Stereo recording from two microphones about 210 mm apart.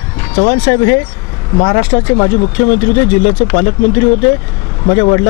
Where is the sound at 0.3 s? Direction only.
25° left (ahead or behind).